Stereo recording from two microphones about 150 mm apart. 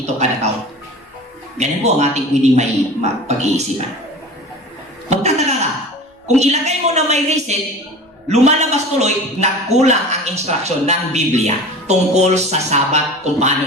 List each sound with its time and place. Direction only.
0.0 s a man's voice: 45° right (ahead or behind)
1.5 s a man's voice: 50° right (ahead or behind)
5.0 s chuckle: 45° right (ahead or behind)
6.2 s a man's voice: 50° right (ahead or behind)